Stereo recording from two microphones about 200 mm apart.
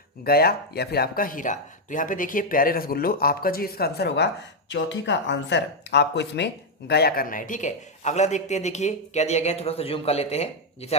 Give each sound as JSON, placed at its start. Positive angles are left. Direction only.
{"t": 0.3, "sound": "speech", "side_deg": 50}